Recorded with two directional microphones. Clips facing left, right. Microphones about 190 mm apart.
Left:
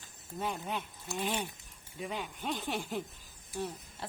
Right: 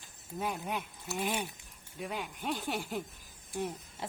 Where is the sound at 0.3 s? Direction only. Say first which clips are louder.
Right 1 dB; 5° right (ahead or behind).